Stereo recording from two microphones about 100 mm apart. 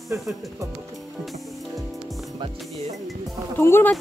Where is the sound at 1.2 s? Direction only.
Centre (ahead or behind).